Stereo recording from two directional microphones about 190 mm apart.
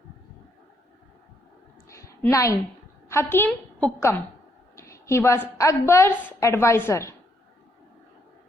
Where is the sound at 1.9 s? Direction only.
15° left (ahead or behind).